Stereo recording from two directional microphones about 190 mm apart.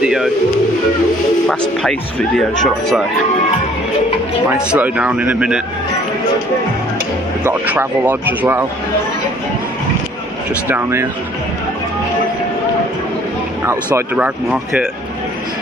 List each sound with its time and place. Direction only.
0.0 s speech: centre (ahead or behind)
1.5 s speech: centre (ahead or behind)
4.6 s a man's voice: 5° right (ahead or behind)
7.4 s a man's voice: 10° right (ahead or behind)
10.7 s a man's voice: 15° right (ahead or behind)
13.9 s a man's voice: 5° right (ahead or behind)